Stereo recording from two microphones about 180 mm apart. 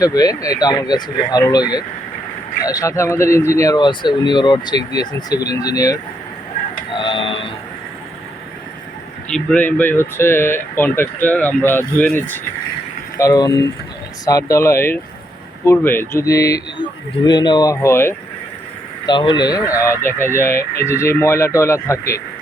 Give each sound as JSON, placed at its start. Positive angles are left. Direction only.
{"t": 0.0, "sound": "speech", "side_deg": 20}
{"t": 6.9, "sound": "printer", "side_deg": 30}
{"t": 9.3, "sound": "speech", "side_deg": 5}
{"t": 19.0, "sound": "speech", "side_deg": 25}